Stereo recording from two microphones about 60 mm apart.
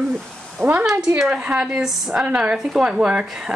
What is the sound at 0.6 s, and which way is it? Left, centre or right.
Speech, right.